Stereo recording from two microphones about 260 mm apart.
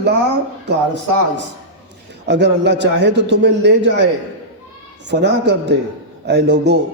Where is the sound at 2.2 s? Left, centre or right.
Right.